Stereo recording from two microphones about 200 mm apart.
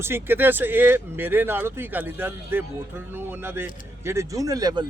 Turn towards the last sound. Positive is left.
turn(degrees=-20)  # may be behind; listen again after turning